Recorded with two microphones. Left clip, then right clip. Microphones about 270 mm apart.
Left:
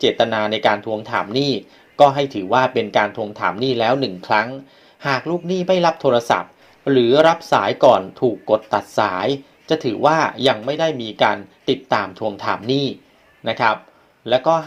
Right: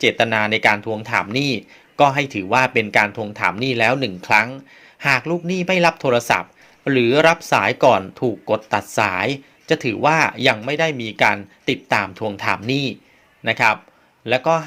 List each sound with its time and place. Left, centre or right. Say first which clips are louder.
0.3 s speech: right 1 dB; right